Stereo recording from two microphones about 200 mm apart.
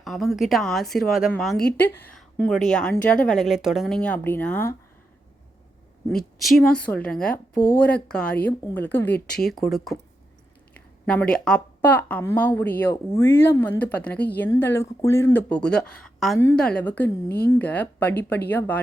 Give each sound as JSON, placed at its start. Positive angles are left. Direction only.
{"t": 0.0, "sound": "a woman's voice", "side_deg": 0}
{"t": 6.1, "sound": "a woman's voice", "side_deg": 0}
{"t": 11.0, "sound": "a woman's voice", "side_deg": 5}
{"t": 17.2, "sound": "speech", "side_deg": 55}
{"t": 17.6, "sound": "a woman's voice", "side_deg": 10}